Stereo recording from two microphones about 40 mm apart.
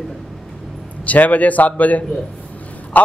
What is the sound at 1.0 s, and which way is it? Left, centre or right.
A man's voice, left.